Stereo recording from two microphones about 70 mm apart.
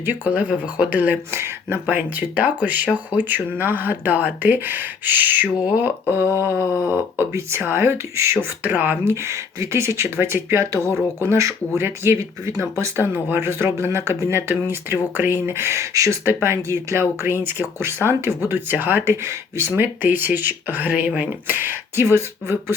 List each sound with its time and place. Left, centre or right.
0.0 s speech: right
6.5 s a sound: left
6.7 s speech: left
7.2 s speech: right
8.6 s speech: right
13.1 s speech: right
16.2 s speech: right